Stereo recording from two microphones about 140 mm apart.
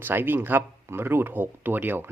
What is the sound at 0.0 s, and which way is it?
Speech, 15° right (ahead or behind).